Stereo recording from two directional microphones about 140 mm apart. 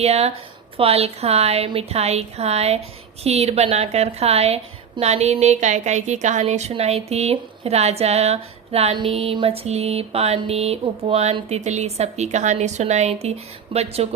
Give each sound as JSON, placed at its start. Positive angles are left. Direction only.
{"t": 0.0, "sound": "a woman's voice", "side_deg": -50}